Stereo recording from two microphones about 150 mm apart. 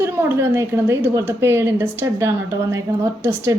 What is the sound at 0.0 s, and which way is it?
A woman's voice, 15° right (ahead or behind).